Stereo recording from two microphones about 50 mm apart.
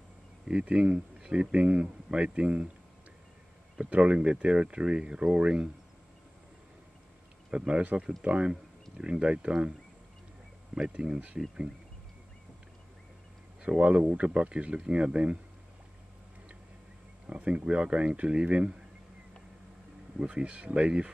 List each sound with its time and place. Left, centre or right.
0.5 s speech: centre
3.8 s speech: right
7.5 s speech: right
10.9 s speech: right
13.6 s speech: right
17.3 s speech: right
20.2 s speech: right